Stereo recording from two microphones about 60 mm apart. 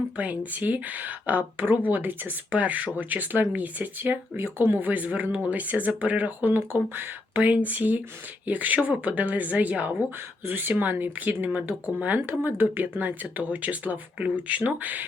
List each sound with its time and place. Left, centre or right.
0.2 s speech: right
4.9 s speech: right
11.5 s speech: right